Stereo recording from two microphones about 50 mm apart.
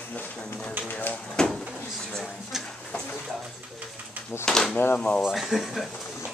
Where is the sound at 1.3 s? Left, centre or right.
Centre.